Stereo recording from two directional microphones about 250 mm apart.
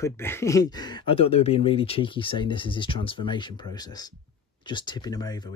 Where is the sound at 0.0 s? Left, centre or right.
Centre.